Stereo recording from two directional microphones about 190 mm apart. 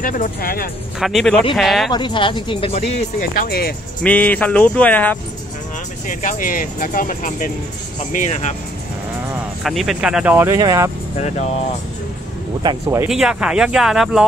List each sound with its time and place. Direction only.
0.0 s speech: 45° left (ahead or behind)
0.9 s speech: centre (ahead or behind)
1.9 s speech: 25° left (ahead or behind)
3.4 s speech: 50° left (ahead or behind)
4.0 s speech: 5° left (ahead or behind)
6.0 s speech: 45° left (ahead or behind)
9.6 s speech: centre (ahead or behind); by 10.9 s 15° right (ahead or behind)
11.1 s speech: 35° left (ahead or behind)
12.6 s speech: 15° right (ahead or behind)
13.1 s speech: 5° right (ahead or behind)